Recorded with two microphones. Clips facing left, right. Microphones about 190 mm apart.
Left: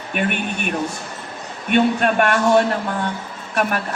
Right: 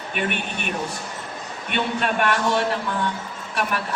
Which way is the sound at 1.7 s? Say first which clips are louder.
Left 8 dB; 50° left (ahead or behind).